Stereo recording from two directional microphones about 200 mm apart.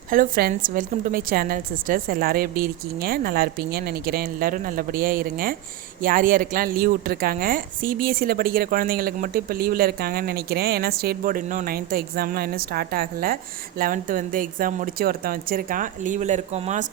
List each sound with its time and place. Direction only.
0.1 s speech: 45° right (ahead or behind)